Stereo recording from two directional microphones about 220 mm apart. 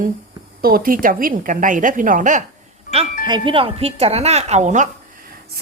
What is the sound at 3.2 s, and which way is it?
A woman's voice, 20° right (ahead or behind).